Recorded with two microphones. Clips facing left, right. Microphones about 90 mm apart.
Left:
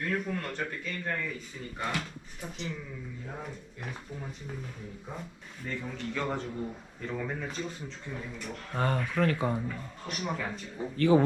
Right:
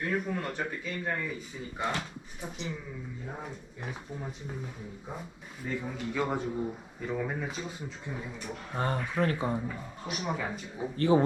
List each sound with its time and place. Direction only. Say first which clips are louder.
0.0 s a man's voice: right 1 dB; 10° right (ahead or behind)
5.6 s a man's voice: right 2 dB; 10° right (ahead or behind)
8.8 s a man's voice: left 1 dB; 25° right (ahead or behind); by 10.8 s 5° right (ahead or behind)
10.9 s speech: left 1 dB; 25° right (ahead or behind)